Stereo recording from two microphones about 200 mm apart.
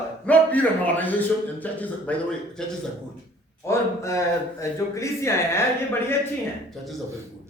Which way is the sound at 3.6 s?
15° left (ahead or behind).